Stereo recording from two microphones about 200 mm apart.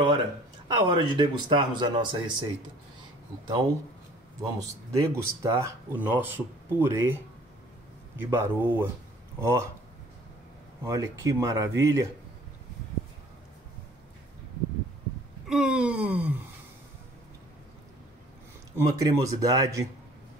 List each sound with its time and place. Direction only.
0.7 s speech: 20° right (ahead or behind)
3.4 s speech: 20° right (ahead or behind)
8.2 s speech: 10° right (ahead or behind)
10.8 s speech: 15° right (ahead or behind)
15.4 s wail: 5° right (ahead or behind)
18.8 s speech: 15° right (ahead or behind)